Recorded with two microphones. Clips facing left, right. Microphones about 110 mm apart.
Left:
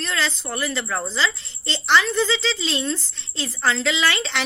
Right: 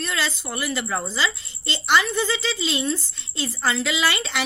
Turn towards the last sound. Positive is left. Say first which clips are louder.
# left 1 dB
turn(degrees=-5)  # may be behind; listen again after turning